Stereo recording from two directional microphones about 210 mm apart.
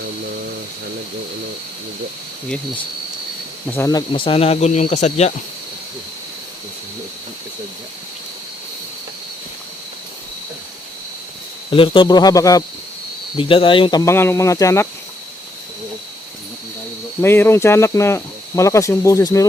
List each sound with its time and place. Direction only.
3.7 s speech: 15° left (ahead or behind); by 5.3 s 30° left (ahead or behind)
11.7 s speech: 25° left (ahead or behind)
17.2 s speech: 10° left (ahead or behind)